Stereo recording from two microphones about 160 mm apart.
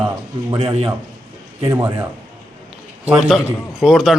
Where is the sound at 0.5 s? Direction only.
35° right (ahead or behind).